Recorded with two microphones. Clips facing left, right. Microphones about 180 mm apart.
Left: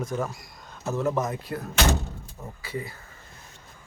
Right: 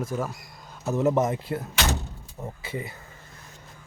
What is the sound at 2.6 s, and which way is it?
Speech, 25° right (ahead or behind).